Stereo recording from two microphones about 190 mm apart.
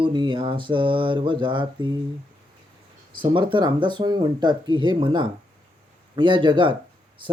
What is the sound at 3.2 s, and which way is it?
Speech, 25° right (ahead or behind).